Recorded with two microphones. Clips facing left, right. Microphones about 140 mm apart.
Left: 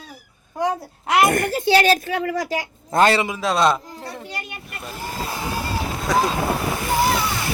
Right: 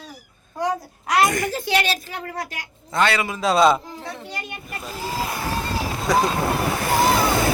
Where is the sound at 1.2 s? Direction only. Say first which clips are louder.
Left 3 dB; 60° left (ahead or behind).